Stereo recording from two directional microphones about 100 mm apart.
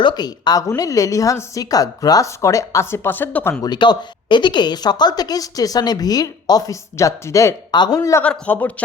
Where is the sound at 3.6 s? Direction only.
45° left (ahead or behind).